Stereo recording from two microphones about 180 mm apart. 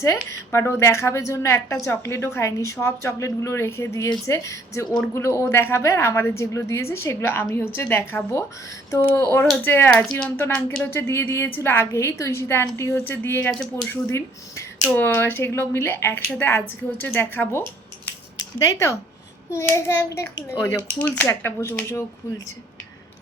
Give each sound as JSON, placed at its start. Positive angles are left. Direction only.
{"t": 0.0, "sound": "a woman's voice", "side_deg": 15}